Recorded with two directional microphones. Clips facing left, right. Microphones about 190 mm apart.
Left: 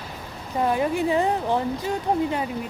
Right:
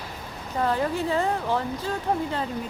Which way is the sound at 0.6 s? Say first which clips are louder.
Left 3 dB; 15° left (ahead or behind).